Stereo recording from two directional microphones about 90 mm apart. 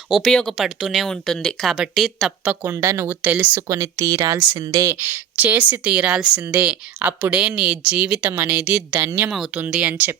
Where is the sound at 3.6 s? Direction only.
40° right (ahead or behind).